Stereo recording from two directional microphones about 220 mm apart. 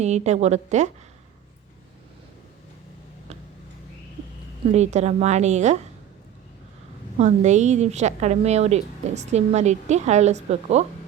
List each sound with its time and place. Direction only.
0.0 s a woman's voice: 30° right (ahead or behind)
4.7 s a woman's voice: 30° right (ahead or behind)
7.2 s a woman's voice: 30° right (ahead or behind)